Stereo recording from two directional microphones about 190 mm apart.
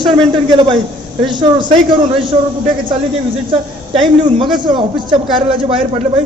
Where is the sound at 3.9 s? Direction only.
25° right (ahead or behind).